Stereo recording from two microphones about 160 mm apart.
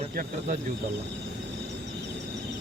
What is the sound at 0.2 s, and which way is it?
Speech, 55° right (ahead or behind).